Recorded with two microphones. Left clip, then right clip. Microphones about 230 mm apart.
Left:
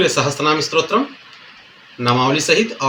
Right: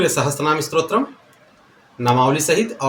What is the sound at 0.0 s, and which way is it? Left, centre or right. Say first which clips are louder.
Speech: left 2 dB; centre.